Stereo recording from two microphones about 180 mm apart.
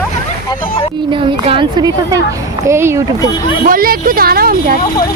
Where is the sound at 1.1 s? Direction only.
30° right (ahead or behind).